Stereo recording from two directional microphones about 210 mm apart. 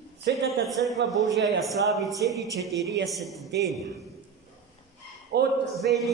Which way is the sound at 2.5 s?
15° right (ahead or behind).